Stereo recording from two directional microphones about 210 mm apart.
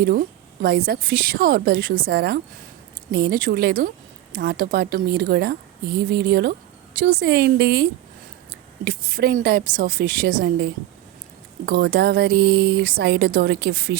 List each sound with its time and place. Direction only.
0.0 s a woman's voice: 45° right (ahead or behind)